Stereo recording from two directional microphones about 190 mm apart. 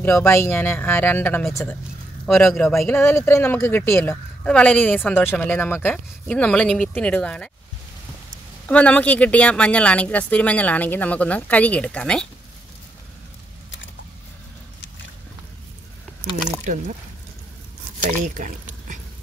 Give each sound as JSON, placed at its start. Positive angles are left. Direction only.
{"t": 0.0, "sound": "speech", "side_deg": 15}
{"t": 2.2, "sound": "speech", "side_deg": 0}
{"t": 8.6, "sound": "speech", "side_deg": 5}
{"t": 16.6, "sound": "speech", "side_deg": -40}
{"t": 18.2, "sound": "squish", "side_deg": -40}